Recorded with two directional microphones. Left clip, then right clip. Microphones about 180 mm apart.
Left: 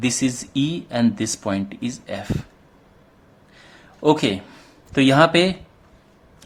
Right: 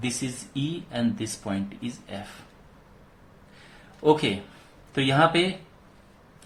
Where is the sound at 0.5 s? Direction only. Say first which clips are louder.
Left 8 dB; 50° left (ahead or behind).